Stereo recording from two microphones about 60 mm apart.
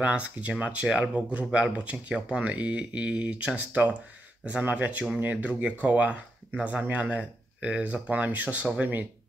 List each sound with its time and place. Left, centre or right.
0.0 s speech: centre